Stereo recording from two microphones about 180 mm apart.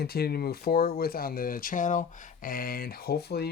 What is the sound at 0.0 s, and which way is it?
Speech, 60° left (ahead or behind).